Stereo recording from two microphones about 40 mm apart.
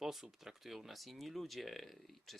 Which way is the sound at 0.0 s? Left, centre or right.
Centre.